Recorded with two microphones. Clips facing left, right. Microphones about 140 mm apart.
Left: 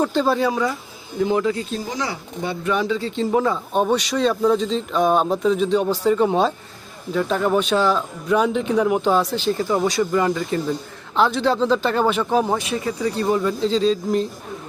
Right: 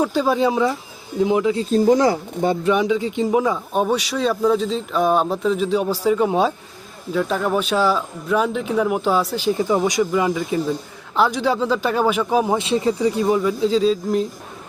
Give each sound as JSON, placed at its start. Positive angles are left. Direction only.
{"t": 0.0, "sound": "speech", "side_deg": -10}
{"t": 0.3, "sound": "speech", "side_deg": -20}
{"t": 1.7, "sound": "speech", "side_deg": -45}
{"t": 2.6, "sound": "a man's voice", "side_deg": -15}
{"t": 12.5, "sound": "speech", "side_deg": -25}
{"t": 13.2, "sound": "speech", "side_deg": -5}